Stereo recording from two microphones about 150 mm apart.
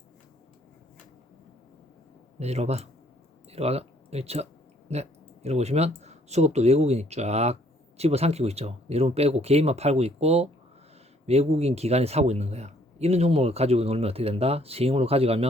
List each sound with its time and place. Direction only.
2.4 s a man's voice: 45° right (ahead or behind)